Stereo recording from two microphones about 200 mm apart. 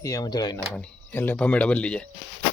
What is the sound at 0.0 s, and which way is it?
Speech, 15° left (ahead or behind).